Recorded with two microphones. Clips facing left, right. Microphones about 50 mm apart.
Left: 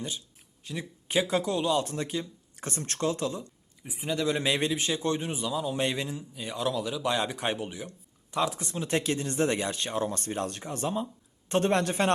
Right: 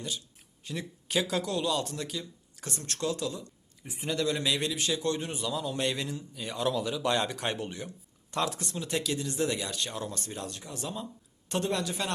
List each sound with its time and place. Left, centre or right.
0.6 s speech: centre
1.0 s speech: left
3.8 s speech: centre; by 5.2 s left
5.2 s a man's voice: centre
6.4 s a man's voice: centre
8.6 s speech: left
8.9 s a man's voice: left